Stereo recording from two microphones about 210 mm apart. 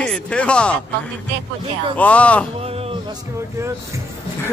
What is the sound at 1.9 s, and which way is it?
Speech, 5° left (ahead or behind).